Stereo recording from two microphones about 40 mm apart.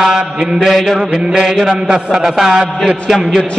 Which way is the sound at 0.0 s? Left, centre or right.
Centre.